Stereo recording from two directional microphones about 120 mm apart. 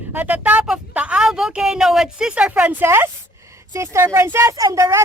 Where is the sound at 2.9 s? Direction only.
20° right (ahead or behind).